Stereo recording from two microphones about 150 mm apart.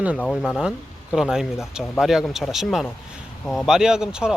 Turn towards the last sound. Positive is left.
turn(degrees=-5)  # may be behind; listen again after turning